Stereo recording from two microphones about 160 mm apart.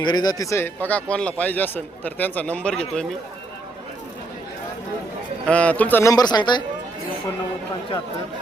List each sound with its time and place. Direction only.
0.0 s a man's voice: 25° left (ahead or behind); by 3.1 s 5° left (ahead or behind)
5.5 s a man's voice: 10° left (ahead or behind); by 6.6 s 25° left (ahead or behind)